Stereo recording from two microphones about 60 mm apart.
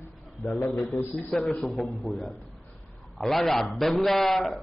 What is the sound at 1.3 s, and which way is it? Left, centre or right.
A man's voice, centre.